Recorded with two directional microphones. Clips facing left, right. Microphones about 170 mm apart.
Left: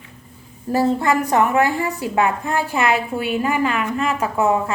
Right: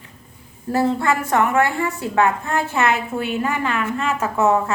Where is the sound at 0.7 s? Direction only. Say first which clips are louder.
Left 1 dB; 15° left (ahead or behind).